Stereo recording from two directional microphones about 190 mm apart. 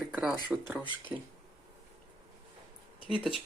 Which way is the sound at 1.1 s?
15° right (ahead or behind).